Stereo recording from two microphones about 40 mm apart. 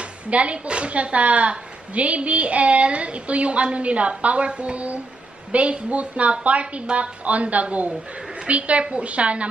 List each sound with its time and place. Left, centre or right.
0.0 s speech: right